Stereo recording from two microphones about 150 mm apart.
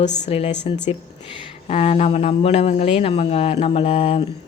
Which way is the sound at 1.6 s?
45° left (ahead or behind).